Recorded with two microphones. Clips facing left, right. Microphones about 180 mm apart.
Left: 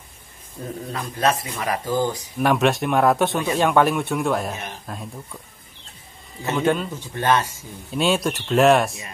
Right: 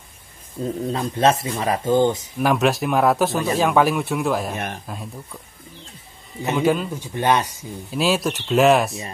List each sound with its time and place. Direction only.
0.9 s speech: 25° right (ahead or behind)
2.3 s speech: centre (ahead or behind)
6.4 s a man's voice: 10° right (ahead or behind)
7.2 s a man's voice: 15° right (ahead or behind)
7.9 s speech: centre (ahead or behind)